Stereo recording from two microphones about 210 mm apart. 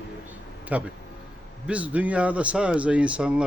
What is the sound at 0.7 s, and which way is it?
A man's voice, 5° right (ahead or behind).